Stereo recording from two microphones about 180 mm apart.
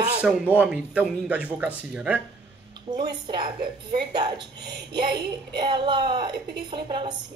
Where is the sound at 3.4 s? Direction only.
60° right (ahead or behind).